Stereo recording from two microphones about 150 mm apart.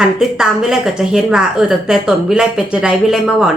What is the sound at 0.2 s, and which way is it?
A woman's voice, 5° right (ahead or behind).